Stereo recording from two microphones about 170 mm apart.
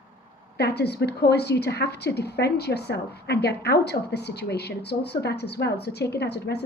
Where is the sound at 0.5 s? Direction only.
75° left (ahead or behind).